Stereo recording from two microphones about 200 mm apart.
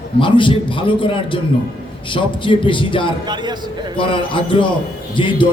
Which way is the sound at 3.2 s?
20° right (ahead or behind).